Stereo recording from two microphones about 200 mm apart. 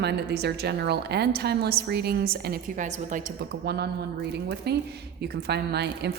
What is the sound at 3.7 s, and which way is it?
Speech, 55° right (ahead or behind).